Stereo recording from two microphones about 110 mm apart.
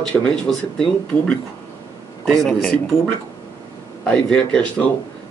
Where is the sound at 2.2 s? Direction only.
Centre (ahead or behind).